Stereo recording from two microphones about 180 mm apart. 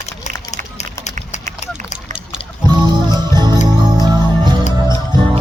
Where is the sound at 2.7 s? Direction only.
25° right (ahead or behind).